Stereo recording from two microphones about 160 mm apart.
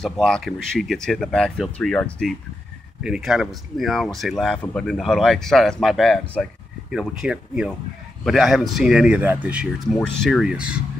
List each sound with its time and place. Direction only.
0.0 s speech: centre (ahead or behind)
10.0 s speech: 5° left (ahead or behind)